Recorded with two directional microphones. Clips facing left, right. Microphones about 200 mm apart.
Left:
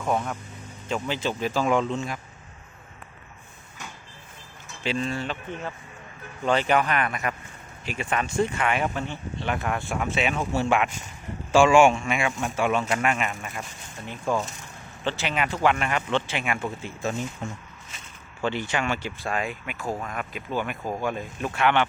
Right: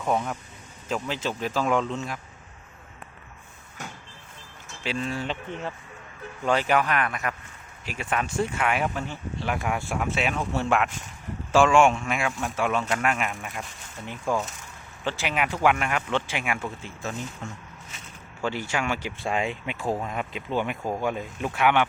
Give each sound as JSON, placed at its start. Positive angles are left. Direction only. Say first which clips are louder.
{"t": 0.0, "sound": "speech", "louder": "even", "side_deg": 0}
{"t": 4.8, "sound": "speech", "louder": "left 2 dB", "side_deg": -5}
{"t": 5.3, "sound": "speech", "louder": "right 1 dB", "side_deg": -20}
{"t": 6.4, "sound": "speech", "louder": "left 1 dB", "side_deg": -5}
{"t": 15.0, "sound": "speech", "louder": "even", "side_deg": -10}
{"t": 16.6, "sound": "speech", "louder": "left 3 dB", "side_deg": 10}
{"t": 18.4, "sound": "speech", "louder": "left 1 dB", "side_deg": -5}
{"t": 19.2, "sound": "speech", "louder": "right 2 dB", "side_deg": -25}